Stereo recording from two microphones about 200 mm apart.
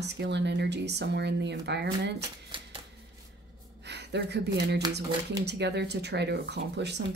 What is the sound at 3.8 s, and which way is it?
Speech, 60° right (ahead or behind).